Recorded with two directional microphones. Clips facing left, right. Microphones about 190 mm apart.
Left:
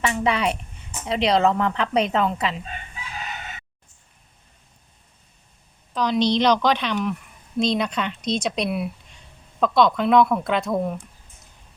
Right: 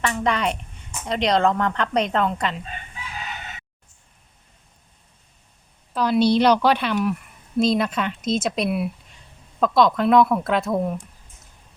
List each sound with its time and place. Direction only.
0.0 s speech: 5° left (ahead or behind)
5.9 s speech: 5° right (ahead or behind)